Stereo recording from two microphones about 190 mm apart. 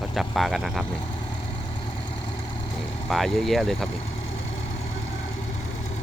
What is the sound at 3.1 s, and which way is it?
Speech, centre (ahead or behind).